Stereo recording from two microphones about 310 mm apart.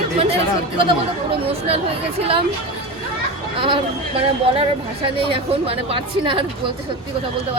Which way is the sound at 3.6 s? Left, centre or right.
Centre.